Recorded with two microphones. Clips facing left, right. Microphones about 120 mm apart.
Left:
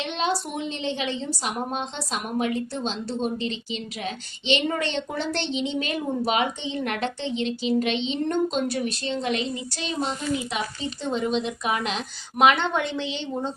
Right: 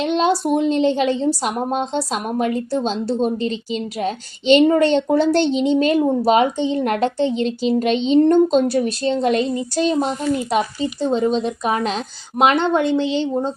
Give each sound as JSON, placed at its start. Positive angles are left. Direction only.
{"t": 0.0, "sound": "a woman's voice", "side_deg": -40}
{"t": 11.0, "sound": "a woman's voice", "side_deg": -35}